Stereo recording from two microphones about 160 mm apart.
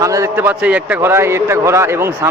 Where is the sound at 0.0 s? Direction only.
20° right (ahead or behind).